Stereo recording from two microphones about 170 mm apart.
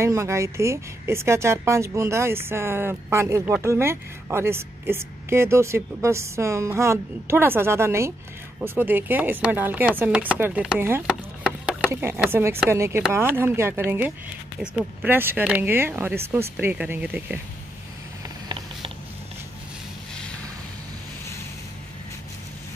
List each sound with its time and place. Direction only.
0.0 s a woman's voice: 15° right (ahead or behind)